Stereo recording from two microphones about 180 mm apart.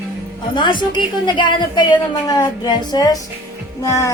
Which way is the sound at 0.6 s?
25° left (ahead or behind).